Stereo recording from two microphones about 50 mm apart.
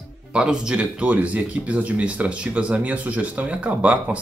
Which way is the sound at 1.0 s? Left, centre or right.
Right.